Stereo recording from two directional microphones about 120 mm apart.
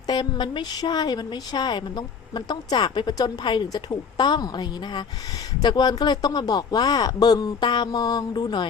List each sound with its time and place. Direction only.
0.1 s a woman's voice: 40° left (ahead or behind)